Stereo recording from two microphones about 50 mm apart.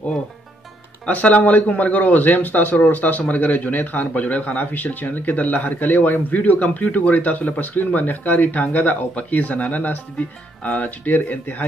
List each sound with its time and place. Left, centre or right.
1.0 s speech: left